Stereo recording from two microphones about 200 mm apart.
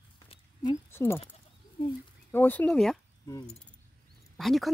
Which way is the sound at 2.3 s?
10° left (ahead or behind).